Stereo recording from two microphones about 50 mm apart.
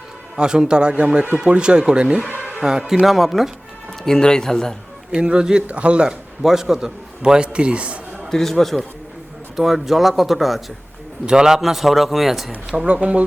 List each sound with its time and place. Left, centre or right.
0.3 s speech: centre
4.0 s speech: centre
5.1 s speech: centre
6.4 s a man's voice: centre
8.3 s a man's voice: centre
11.3 s a man's voice: centre
12.7 s speech: right